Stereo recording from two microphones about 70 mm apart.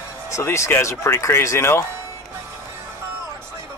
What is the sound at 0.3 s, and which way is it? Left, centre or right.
Speech, left.